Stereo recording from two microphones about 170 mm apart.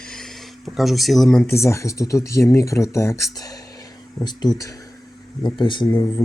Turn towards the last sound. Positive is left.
turn(degrees=30)  # may be behind; listen again after turning